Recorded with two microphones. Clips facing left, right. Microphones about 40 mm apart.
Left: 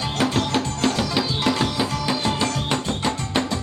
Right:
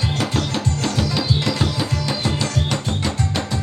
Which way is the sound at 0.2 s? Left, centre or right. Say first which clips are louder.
Left 5 dB; left.